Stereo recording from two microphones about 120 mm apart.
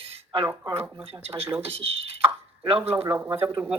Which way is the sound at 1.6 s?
55° right (ahead or behind).